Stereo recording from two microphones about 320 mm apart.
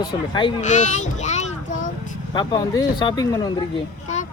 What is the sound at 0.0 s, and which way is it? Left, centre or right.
A child's voice, centre.